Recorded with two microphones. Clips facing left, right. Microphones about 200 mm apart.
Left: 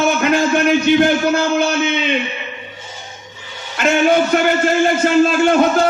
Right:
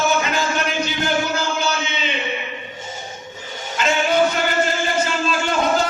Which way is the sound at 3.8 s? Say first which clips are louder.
Left 4 dB; 55° left (ahead or behind).